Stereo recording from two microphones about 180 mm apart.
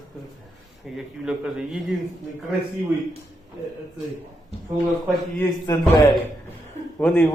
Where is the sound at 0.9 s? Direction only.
5° right (ahead or behind).